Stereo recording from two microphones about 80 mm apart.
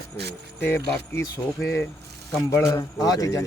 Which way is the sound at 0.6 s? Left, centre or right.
Left.